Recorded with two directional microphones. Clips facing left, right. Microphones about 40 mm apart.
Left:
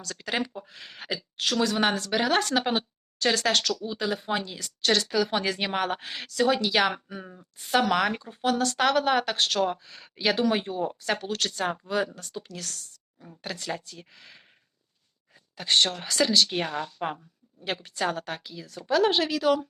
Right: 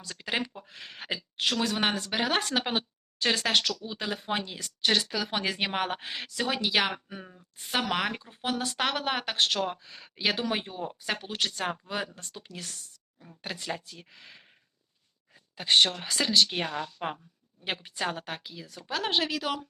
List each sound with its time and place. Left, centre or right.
0.0 s a woman's voice: right
0.7 s a woman's voice: right
1.7 s speech: right
4.8 s a woman's voice: centre
8.4 s speech: centre
8.8 s a woman's voice: centre
11.2 s speech: centre
13.7 s a woman's voice: centre
15.5 s speech: right
16.1 s a woman's voice: centre
17.6 s speech: right
18.0 s a woman's voice: centre